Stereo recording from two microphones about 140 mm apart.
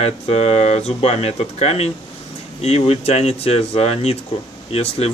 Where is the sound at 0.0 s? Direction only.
45° left (ahead or behind).